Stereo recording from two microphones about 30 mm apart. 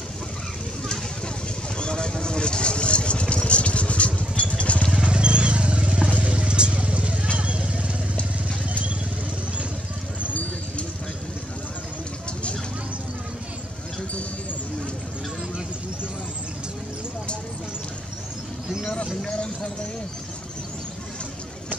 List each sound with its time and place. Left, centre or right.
1.8 s vehicle: left
4.6 s motorcycle: left
4.9 s vehicle: right